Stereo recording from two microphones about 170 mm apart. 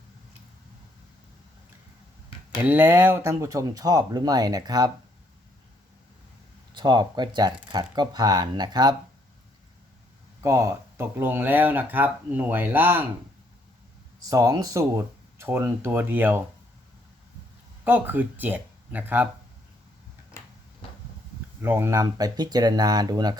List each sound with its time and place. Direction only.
2.6 s speech: 10° right (ahead or behind)
6.7 s speech: 25° right (ahead or behind)
10.4 s speech: 15° right (ahead or behind)
14.3 s speech: 20° right (ahead or behind)
17.8 s speech: 10° right (ahead or behind)
21.6 s speech: 15° right (ahead or behind)